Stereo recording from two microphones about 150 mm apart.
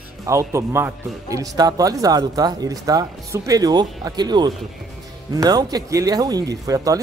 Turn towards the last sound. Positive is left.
turn(degrees=-25)  # may be behind; listen again after turning